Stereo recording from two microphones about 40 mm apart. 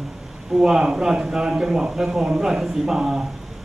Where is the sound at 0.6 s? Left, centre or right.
Centre.